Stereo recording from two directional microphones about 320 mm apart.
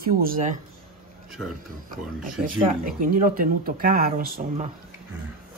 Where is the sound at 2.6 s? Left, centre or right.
Right.